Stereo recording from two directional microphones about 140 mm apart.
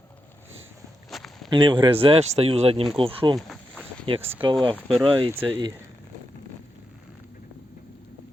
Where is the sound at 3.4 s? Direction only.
5° left (ahead or behind).